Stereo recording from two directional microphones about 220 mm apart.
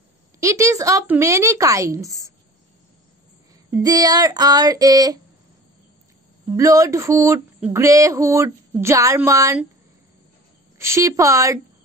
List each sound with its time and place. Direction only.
0.4 s speech: 15° right (ahead or behind)
3.7 s speech: 15° right (ahead or behind)
6.4 s speech: 15° right (ahead or behind)
10.8 s speech: 15° right (ahead or behind)